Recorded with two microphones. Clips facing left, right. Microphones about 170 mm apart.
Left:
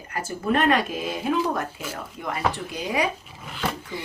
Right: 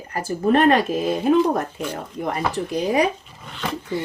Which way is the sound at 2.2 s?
45° right (ahead or behind).